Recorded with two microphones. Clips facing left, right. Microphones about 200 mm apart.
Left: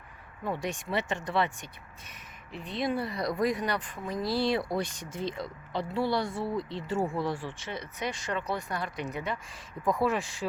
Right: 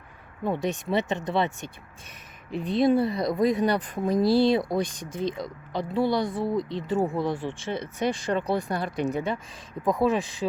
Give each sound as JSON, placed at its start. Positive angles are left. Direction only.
{"t": 0.4, "sound": "speech", "side_deg": -20}
{"t": 2.5, "sound": "speech", "side_deg": -35}